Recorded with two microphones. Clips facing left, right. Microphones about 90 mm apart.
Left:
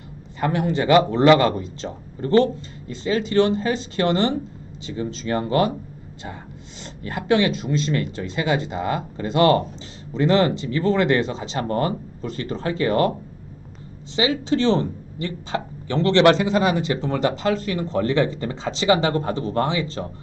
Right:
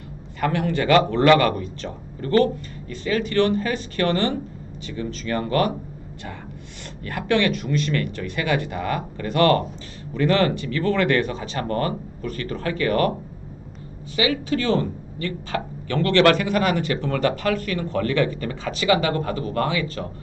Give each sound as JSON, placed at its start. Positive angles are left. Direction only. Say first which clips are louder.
{"t": 0.3, "sound": "speech", "louder": "left 1 dB", "side_deg": 20}
{"t": 7.0, "sound": "speech", "louder": "left 1 dB", "side_deg": 20}
{"t": 14.2, "sound": "speech", "louder": "left 2 dB", "side_deg": 25}